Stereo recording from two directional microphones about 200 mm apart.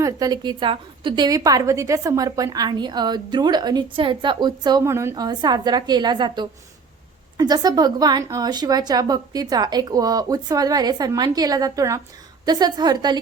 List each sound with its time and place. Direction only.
0.0 s a woman's voice: 20° right (ahead or behind)